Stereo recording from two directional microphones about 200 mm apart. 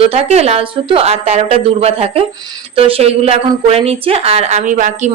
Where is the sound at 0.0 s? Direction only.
30° right (ahead or behind).